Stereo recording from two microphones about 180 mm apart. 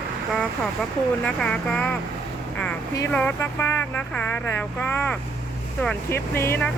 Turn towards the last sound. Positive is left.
turn(degrees=15)  # may be behind; listen again after turning